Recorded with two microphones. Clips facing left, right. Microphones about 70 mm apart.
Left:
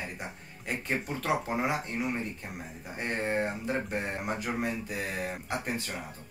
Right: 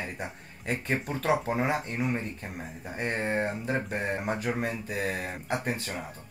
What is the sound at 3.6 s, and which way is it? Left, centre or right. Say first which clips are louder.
Speech: right 2 dB; right.